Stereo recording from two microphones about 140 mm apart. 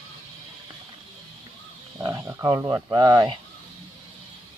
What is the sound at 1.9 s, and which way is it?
Speech, 25° right (ahead or behind).